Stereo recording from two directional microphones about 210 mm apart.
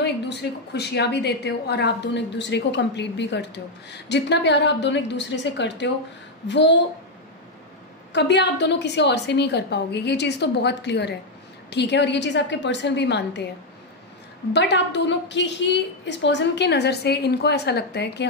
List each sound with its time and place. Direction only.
0.0 s a woman's voice: 55° left (ahead or behind)
8.1 s a woman's voice: 55° left (ahead or behind)
14.5 s a woman's voice: 55° left (ahead or behind)